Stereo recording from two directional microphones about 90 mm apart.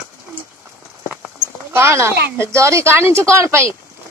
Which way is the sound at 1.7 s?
30° right (ahead or behind).